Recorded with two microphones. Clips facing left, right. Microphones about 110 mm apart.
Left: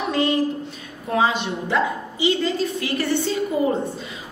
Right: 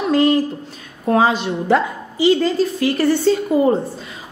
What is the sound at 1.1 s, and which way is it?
Speech, 45° right (ahead or behind).